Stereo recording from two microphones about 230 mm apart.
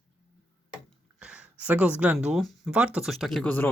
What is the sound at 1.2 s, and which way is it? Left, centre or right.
Speech, centre.